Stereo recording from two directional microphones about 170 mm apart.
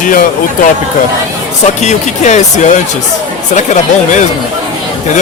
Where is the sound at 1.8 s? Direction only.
45° left (ahead or behind).